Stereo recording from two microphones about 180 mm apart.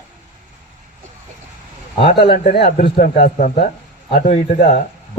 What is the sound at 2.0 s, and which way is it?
Speech, 65° left (ahead or behind).